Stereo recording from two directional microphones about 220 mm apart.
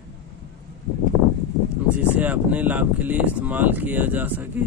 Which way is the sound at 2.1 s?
5° right (ahead or behind).